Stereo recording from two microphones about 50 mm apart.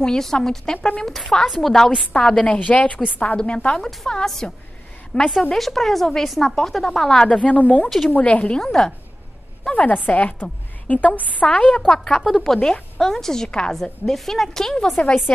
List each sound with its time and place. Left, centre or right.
0.0 s a woman's voice: centre
2.1 s a woman's voice: centre
2.6 s a woman's voice: left
3.8 s a woman's voice: centre
7.2 s a woman's voice: left
8.5 s a woman's voice: centre
9.7 s a woman's voice: left
11.9 s speech: centre
12.5 s a woman's voice: left
13.0 s a woman's voice: centre